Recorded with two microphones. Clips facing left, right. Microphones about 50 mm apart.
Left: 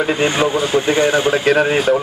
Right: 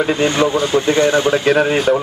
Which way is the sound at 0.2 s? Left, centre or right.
Centre.